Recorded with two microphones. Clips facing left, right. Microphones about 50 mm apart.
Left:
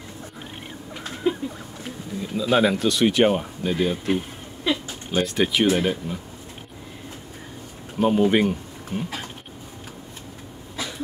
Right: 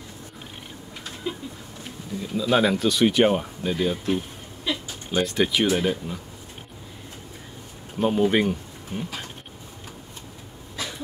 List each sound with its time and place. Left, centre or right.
1.3 s a sound: left
2.3 s speech: centre
5.1 s speech: centre
8.0 s speech: centre